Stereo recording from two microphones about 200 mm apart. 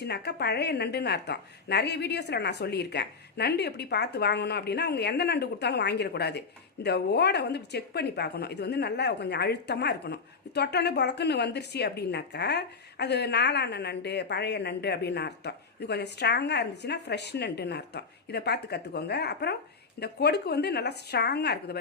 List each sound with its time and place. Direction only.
0.0 s speech: 55° left (ahead or behind)